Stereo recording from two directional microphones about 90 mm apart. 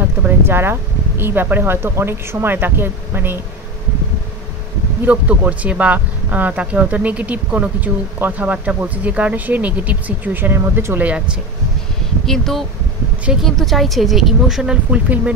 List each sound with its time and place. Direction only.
0.5 s speech: 25° right (ahead or behind)
5.0 s speech: 15° right (ahead or behind)
12.3 s speech: 5° left (ahead or behind); by 15.3 s 15° right (ahead or behind)